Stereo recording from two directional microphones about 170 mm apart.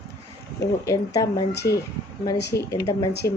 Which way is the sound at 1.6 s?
80° left.